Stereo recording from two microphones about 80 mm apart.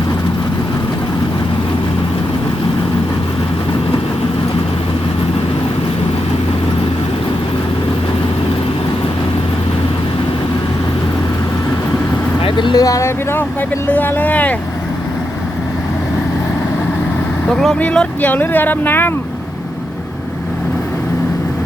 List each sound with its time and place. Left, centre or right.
12.5 s vehicle: left
12.7 s speech: left
13.9 s speech: left
17.7 s speech: centre